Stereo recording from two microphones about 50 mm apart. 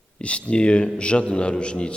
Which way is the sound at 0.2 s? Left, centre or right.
Left.